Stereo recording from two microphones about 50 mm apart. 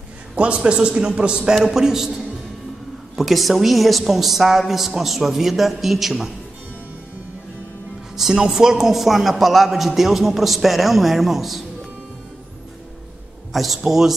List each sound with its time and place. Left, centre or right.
0.4 s a man's voice: right
3.2 s a man's voice: centre
8.2 s a man's voice: centre
13.5 s a man's voice: centre